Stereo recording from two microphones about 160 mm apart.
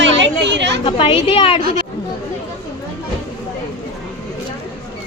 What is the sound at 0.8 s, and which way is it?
Speech, 35° left (ahead or behind).